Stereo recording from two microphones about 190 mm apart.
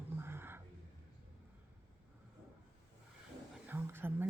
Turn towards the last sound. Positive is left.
turn(degrees=-10)  # may be behind; listen again after turning